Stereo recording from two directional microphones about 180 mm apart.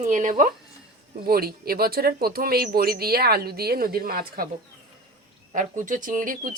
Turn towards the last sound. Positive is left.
turn(degrees=-50)  # may be behind; listen again after turning